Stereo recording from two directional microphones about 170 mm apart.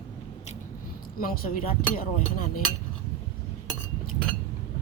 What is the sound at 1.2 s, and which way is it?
Speech, 55° left (ahead or behind).